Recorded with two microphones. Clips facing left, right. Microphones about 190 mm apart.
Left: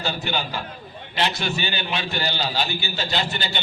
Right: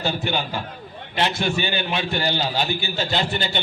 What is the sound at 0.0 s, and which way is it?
A man's voice, 55° right (ahead or behind).